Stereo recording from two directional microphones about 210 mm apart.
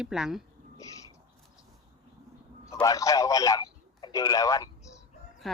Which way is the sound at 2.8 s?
15° left (ahead or behind).